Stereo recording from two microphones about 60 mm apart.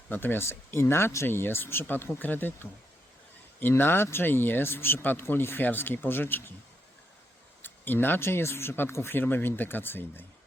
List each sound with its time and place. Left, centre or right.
0.1 s speech: left
7.6 s speech: left